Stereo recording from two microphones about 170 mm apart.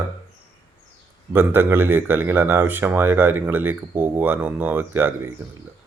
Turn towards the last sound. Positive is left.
turn(degrees=-10)  # may be behind; listen again after turning